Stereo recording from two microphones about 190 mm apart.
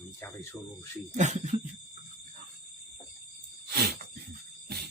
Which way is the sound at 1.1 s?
35° right (ahead or behind).